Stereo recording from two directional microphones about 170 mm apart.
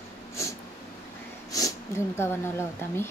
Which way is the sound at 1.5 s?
20° left (ahead or behind).